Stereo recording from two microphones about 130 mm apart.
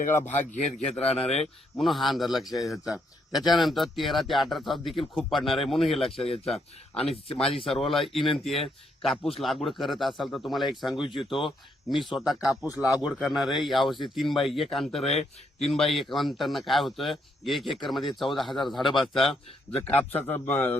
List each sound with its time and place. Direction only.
0.0 s a man's voice: 65° left (ahead or behind)
1.0 s speech: 50° left (ahead or behind)
1.8 s a man's voice: centre (ahead or behind)
6.5 s speech: 50° left (ahead or behind)
7.6 s a man's voice: centre (ahead or behind)
15.1 s speech: 55° left (ahead or behind)
15.7 s a man's voice: centre (ahead or behind)
19.7 s speech: 15° left (ahead or behind)